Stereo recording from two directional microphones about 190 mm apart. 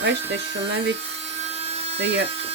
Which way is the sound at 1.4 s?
35° right (ahead or behind).